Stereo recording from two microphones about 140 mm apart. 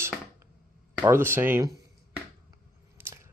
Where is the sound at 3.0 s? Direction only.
15° right (ahead or behind).